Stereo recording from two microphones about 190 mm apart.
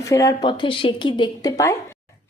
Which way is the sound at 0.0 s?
15° left (ahead or behind).